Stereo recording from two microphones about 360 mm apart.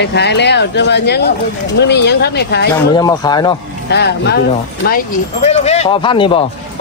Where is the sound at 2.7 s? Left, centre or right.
Centre.